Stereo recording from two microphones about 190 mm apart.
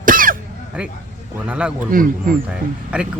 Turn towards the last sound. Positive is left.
turn(degrees=-5)  # may be behind; listen again after turning